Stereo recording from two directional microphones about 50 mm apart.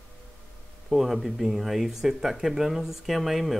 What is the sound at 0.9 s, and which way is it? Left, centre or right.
Speech, centre.